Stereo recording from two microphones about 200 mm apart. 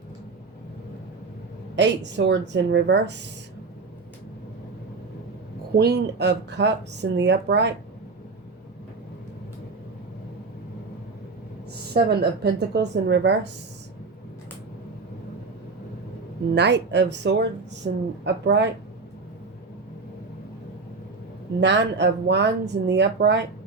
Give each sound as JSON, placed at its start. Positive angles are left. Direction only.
{"t": 1.7, "sound": "speech", "side_deg": -60}
{"t": 5.7, "sound": "speech", "side_deg": -55}
{"t": 11.9, "sound": "speech", "side_deg": -55}
{"t": 16.6, "sound": "speech", "side_deg": -60}
{"t": 21.6, "sound": "speech", "side_deg": -60}